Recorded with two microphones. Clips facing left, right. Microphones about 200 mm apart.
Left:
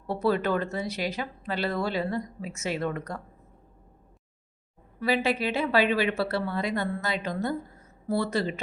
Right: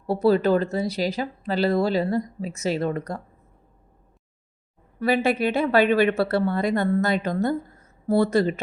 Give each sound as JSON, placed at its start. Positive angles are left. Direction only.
{"t": 0.1, "sound": "speech", "side_deg": -35}
{"t": 4.9, "sound": "a woman's voice", "side_deg": -50}